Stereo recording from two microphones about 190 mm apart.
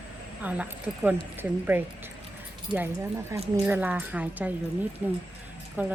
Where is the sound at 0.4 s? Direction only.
5° right (ahead or behind).